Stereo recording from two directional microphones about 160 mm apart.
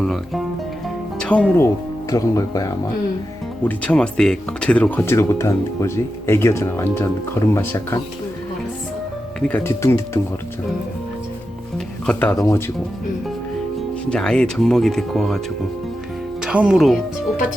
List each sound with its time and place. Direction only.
0.0 s music: centre (ahead or behind)
1.2 s speech: 5° left (ahead or behind)
3.6 s speech: 10° left (ahead or behind)
9.4 s speech: 10° left (ahead or behind)
12.0 s speech: 5° left (ahead or behind)
12.4 s speech: 20° left (ahead or behind)
14.1 s speech: 5° left (ahead or behind)
16.4 s speech: 5° right (ahead or behind)